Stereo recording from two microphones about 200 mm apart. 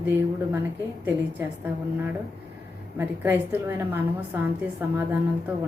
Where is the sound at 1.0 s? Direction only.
10° right (ahead or behind).